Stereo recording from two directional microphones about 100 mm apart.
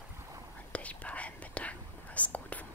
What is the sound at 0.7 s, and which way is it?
Whispering, 15° left (ahead or behind).